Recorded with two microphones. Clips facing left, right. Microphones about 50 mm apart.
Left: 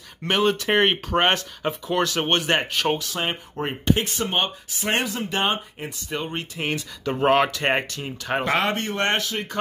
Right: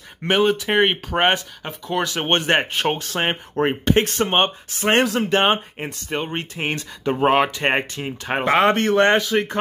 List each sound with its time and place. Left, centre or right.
0.2 s speech: centre
2.2 s speech: right
3.0 s speech: right
7.2 s speech: centre
8.6 s speech: right
9.3 s speech: right